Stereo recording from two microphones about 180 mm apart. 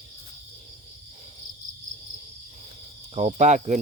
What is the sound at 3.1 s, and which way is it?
Speech, 35° right (ahead or behind).